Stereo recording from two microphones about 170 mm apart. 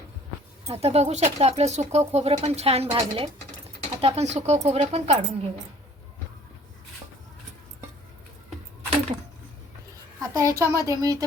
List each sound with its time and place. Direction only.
0.7 s speech: 40° right (ahead or behind)
10.2 s a woman's voice: 20° right (ahead or behind)